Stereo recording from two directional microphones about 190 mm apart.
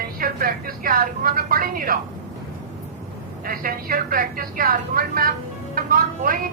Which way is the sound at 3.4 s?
50° right (ahead or behind).